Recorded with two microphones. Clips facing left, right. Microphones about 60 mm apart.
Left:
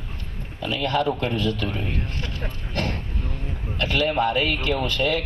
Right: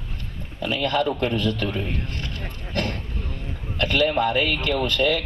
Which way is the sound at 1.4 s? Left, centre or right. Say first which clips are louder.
Right 1 dB; right.